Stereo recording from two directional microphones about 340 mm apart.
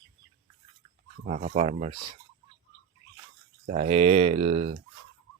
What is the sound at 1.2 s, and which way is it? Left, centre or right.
Speech, right.